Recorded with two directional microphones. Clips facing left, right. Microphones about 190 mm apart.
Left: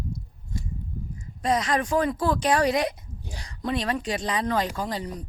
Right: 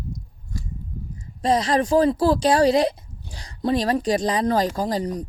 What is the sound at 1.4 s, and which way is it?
Speech, 30° right (ahead or behind).